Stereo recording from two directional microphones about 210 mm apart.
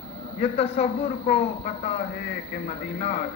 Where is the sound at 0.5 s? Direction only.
30° left (ahead or behind).